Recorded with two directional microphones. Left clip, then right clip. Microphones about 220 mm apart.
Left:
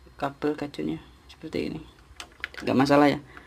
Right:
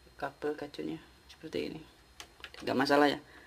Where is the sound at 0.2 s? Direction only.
5° left (ahead or behind).